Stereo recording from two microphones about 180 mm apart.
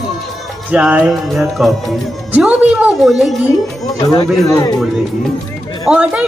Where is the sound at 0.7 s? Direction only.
5° right (ahead or behind).